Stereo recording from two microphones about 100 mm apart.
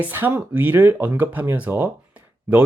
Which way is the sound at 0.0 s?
20° right (ahead or behind).